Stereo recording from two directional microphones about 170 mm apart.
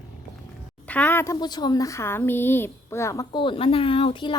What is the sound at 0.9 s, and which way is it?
Speech, 10° left (ahead or behind).